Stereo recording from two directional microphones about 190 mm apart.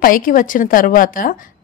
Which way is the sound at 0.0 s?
45° left (ahead or behind).